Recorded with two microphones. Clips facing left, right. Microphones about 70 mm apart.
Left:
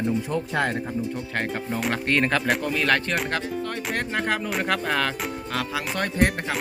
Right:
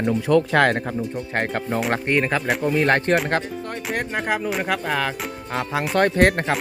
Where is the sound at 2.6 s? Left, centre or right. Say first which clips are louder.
Right 4 dB; right.